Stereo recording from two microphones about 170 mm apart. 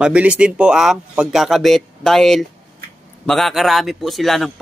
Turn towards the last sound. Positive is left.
turn(degrees=0)  # may be behind; listen again after turning